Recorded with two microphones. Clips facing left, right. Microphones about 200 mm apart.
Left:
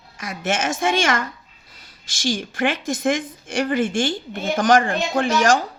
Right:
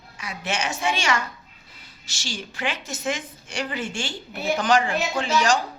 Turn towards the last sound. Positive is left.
turn(degrees=55)  # may be behind; listen again after turning